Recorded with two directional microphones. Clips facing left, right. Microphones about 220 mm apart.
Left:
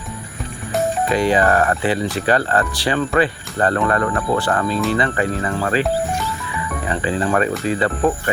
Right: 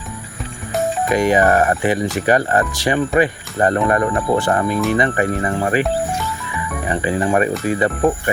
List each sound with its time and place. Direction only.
1.0 s speech: 15° right (ahead or behind)